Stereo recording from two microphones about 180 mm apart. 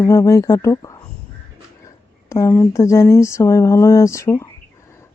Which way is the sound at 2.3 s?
15° left (ahead or behind).